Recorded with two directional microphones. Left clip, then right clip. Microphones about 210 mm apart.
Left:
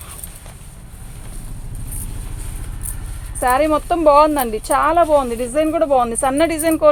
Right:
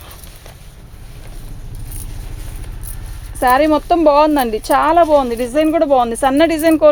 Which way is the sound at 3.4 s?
50° right (ahead or behind).